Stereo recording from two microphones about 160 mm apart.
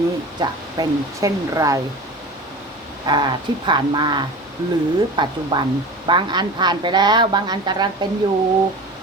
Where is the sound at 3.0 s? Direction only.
30° right (ahead or behind).